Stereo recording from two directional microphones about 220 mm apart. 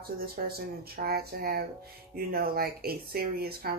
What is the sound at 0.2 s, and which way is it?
Speech, 45° right (ahead or behind).